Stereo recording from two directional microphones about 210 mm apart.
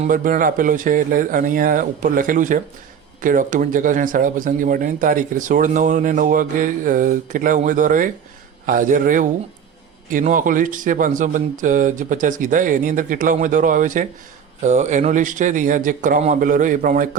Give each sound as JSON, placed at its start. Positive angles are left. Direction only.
{"t": 0.0, "sound": "speech", "side_deg": -40}